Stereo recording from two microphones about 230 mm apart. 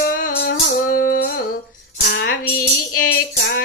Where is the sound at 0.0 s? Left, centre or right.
Left.